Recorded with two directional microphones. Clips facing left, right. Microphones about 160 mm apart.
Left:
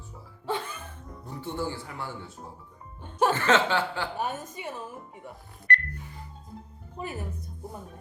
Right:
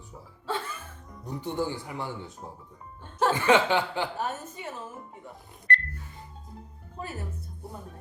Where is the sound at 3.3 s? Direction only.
15° right (ahead or behind).